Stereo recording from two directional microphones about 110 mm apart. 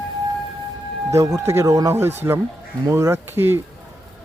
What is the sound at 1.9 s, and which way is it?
Speech, 20° right (ahead or behind).